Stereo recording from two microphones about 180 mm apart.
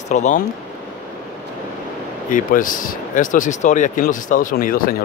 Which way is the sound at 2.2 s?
50° left (ahead or behind).